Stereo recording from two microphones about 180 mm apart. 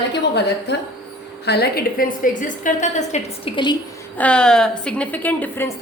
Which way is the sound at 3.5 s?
25° left (ahead or behind).